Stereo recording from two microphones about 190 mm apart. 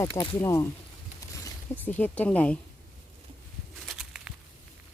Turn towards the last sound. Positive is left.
turn(degrees=-5)  # may be behind; listen again after turning